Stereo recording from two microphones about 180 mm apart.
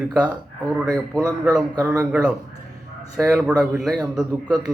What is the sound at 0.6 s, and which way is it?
A man's voice, centre (ahead or behind).